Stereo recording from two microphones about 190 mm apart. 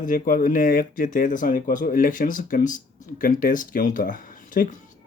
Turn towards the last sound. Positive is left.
turn(degrees=45)  # may be behind; listen again after turning